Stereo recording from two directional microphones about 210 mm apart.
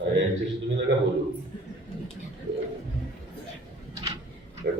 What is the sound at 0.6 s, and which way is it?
Speech, 60° right (ahead or behind).